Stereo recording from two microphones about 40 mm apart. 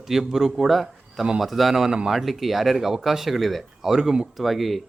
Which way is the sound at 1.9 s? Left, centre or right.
Centre.